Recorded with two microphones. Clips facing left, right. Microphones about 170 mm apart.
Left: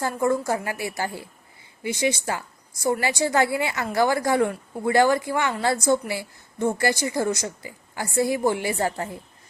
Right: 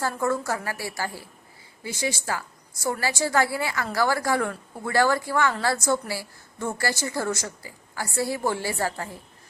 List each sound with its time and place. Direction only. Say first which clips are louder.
0.0 s a woman's voice: left 3 dB; 15° left (ahead or behind)